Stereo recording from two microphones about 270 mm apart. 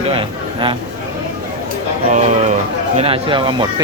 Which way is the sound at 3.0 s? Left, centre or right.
Centre.